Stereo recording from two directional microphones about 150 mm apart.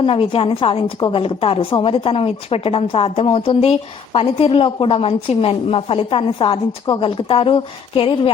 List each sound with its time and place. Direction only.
0.0 s a woman's voice: 35° left (ahead or behind)